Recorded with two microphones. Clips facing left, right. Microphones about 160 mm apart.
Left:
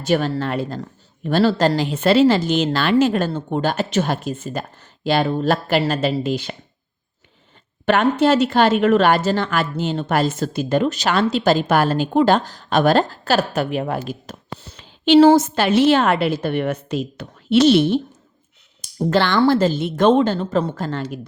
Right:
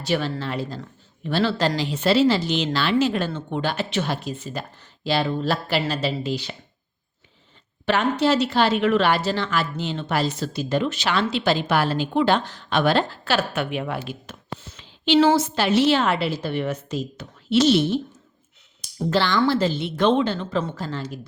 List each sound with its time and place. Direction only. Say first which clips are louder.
0.0 s speech: left 5 dB; 45° left (ahead or behind)
7.9 s speech: left 4 dB; 50° left (ahead or behind)
14.8 s a sound: left 6 dB; 50° left (ahead or behind)
15.3 s a woman's voice: left 5 dB; 45° left (ahead or behind)
20.7 s a woman's voice: left 5 dB; 55° left (ahead or behind)